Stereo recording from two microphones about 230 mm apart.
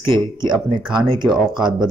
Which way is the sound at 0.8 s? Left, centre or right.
Centre.